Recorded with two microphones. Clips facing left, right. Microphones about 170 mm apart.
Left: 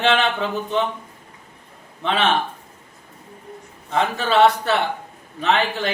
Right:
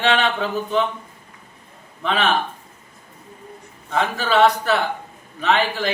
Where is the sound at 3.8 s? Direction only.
Centre (ahead or behind).